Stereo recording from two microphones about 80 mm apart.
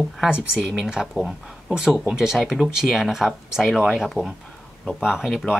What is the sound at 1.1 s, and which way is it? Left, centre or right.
Speech, centre.